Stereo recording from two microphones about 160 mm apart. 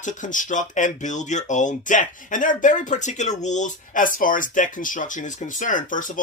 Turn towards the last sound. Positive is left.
turn(degrees=55)  # may be behind; listen again after turning